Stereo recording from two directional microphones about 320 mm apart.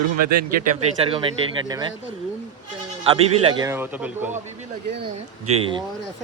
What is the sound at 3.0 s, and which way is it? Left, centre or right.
Speech, centre.